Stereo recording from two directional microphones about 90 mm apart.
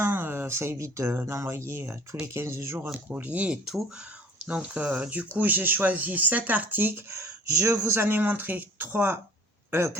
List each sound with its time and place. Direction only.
0.0 s speech: 25° right (ahead or behind)
2.9 s speech: 15° right (ahead or behind)
3.7 s speech: 5° right (ahead or behind)
4.4 s speech: 15° right (ahead or behind)